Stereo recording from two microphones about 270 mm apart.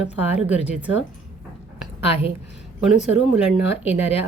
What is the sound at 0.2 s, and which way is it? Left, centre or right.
Speech, centre.